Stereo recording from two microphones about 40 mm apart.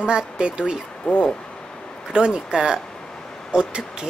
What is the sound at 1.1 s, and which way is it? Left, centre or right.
Speech, left.